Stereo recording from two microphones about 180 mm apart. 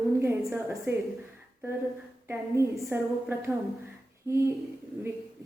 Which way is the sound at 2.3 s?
15° right (ahead or behind).